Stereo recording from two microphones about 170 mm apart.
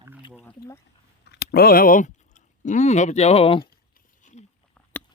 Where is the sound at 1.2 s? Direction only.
70° left (ahead or behind); by 3.6 s 35° left (ahead or behind).